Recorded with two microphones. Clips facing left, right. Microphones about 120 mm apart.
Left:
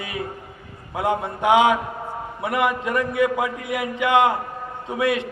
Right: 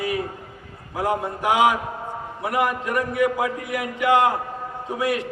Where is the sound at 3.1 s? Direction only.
25° left (ahead or behind).